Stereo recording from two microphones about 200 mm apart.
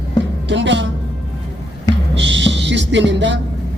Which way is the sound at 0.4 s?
65° right (ahead or behind).